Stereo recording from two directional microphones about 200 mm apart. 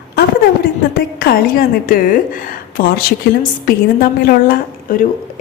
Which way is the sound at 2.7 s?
50° left (ahead or behind).